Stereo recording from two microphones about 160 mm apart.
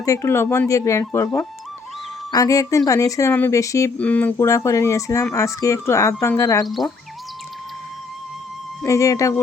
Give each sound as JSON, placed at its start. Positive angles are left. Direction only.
{"t": 0.0, "sound": "speech", "side_deg": 20}
{"t": 3.9, "sound": "speech", "side_deg": 10}
{"t": 6.7, "sound": "speech", "side_deg": 0}
{"t": 8.8, "sound": "speech", "side_deg": 20}